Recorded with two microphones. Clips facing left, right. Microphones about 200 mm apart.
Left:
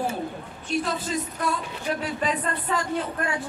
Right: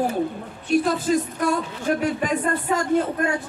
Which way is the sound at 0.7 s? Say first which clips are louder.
Right 7 dB; 50° right (ahead or behind).